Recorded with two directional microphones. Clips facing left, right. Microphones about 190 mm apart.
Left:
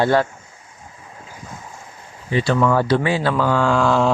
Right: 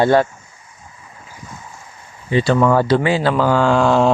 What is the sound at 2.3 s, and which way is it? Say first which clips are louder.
Speech: right 3 dB; 30° right (ahead or behind).